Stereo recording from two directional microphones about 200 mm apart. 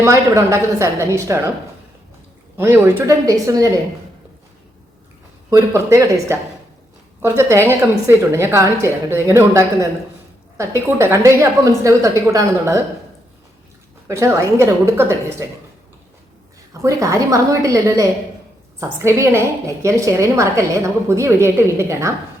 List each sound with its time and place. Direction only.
0.0 s a woman's voice: 15° right (ahead or behind)
2.6 s a woman's voice: 10° right (ahead or behind)
5.5 s a woman's voice: 15° right (ahead or behind)
14.1 s a woman's voice: 15° right (ahead or behind)
16.8 s a woman's voice: 15° right (ahead or behind)